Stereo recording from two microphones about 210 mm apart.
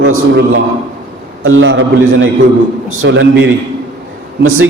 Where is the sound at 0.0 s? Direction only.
70° right (ahead or behind).